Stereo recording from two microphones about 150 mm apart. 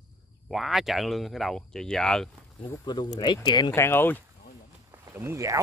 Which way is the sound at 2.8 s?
30° left (ahead or behind).